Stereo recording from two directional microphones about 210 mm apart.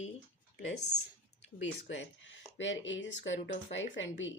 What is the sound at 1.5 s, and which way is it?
Speech, 60° left (ahead or behind).